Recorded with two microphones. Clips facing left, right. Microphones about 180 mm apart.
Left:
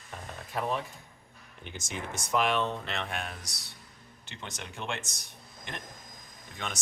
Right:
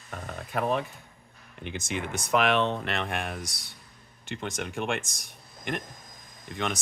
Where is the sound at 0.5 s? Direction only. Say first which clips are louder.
Right 4 dB; 65° right (ahead or behind).